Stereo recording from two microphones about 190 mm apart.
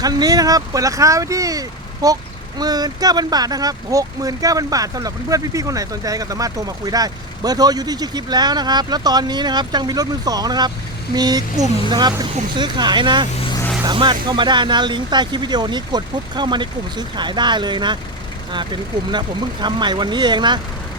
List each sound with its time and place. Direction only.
0.0 s speech: 20° right (ahead or behind)